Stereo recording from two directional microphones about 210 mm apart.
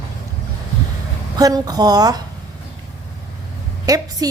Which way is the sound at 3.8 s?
15° right (ahead or behind).